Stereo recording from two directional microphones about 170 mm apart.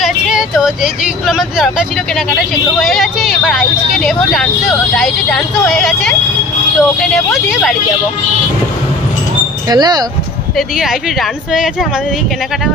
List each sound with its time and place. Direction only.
0.0 s speech: 5° right (ahead or behind)
9.7 s speech: 25° right (ahead or behind)
10.8 s speech: centre (ahead or behind)